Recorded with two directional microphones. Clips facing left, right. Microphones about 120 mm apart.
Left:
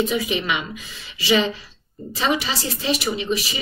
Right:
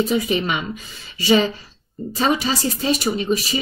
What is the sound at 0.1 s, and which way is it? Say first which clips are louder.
Speech: right 3 dB; 40° right (ahead or behind).